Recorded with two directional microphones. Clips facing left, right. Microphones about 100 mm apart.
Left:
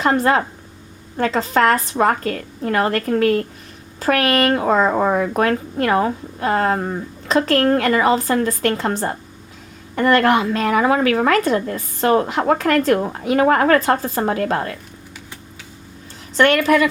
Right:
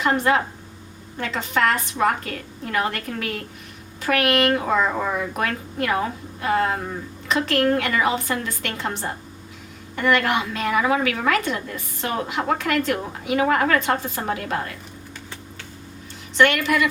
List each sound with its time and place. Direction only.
0.0 s a woman's voice: 35° left (ahead or behind)
16.4 s a woman's voice: 40° left (ahead or behind)